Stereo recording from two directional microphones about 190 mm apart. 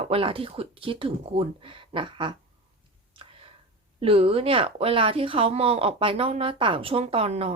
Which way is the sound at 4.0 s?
30° right (ahead or behind).